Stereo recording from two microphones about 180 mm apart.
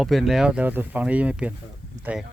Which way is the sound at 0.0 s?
Centre (ahead or behind).